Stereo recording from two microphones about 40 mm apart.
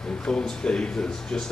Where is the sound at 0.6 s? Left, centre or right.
Left.